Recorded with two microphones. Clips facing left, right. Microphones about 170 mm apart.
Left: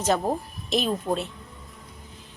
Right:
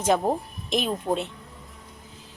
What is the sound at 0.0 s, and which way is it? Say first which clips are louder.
Speech: right 1 dB; 10° right (ahead or behind).